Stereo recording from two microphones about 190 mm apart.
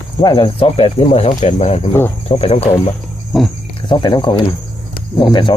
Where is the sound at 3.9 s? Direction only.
25° left (ahead or behind).